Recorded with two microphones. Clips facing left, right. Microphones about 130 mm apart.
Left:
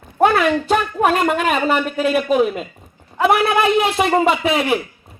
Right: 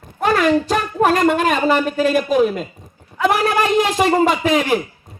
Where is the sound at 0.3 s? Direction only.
40° right (ahead or behind).